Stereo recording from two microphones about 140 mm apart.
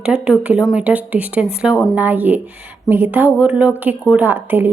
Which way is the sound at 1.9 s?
10° right (ahead or behind).